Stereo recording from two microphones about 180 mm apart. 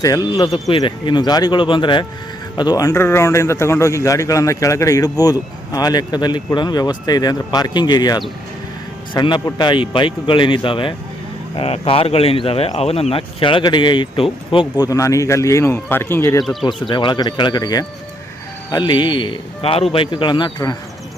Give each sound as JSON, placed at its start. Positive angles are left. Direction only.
{"t": 0.0, "sound": "a man's voice", "side_deg": 20}
{"t": 16.4, "sound": "speech", "side_deg": 0}
{"t": 16.9, "sound": "a man's voice", "side_deg": 25}